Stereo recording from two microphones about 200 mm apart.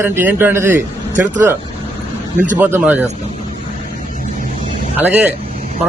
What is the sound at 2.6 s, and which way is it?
Speech, 10° right (ahead or behind).